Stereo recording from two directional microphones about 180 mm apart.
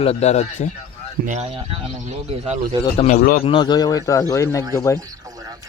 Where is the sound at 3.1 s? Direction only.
45° left (ahead or behind).